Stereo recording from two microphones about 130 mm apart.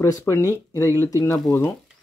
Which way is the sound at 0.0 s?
20° left (ahead or behind).